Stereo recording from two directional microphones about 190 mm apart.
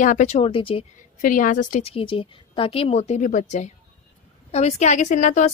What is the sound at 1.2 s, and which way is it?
A woman's voice, 45° left (ahead or behind).